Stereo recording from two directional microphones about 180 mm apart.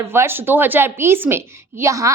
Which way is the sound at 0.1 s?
15° right (ahead or behind).